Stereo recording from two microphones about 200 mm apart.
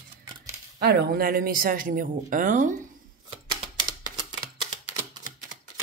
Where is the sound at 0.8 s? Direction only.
55° right (ahead or behind).